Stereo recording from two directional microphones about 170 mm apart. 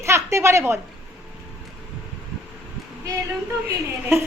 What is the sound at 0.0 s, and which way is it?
Speech, 15° right (ahead or behind).